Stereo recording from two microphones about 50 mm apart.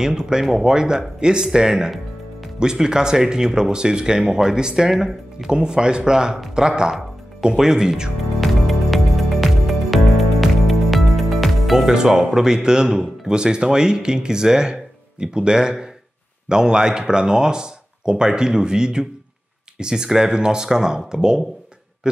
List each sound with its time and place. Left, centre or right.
0.0 s speech: centre
8.2 s music: centre
16.4 s speech: centre
22.0 s a sound: centre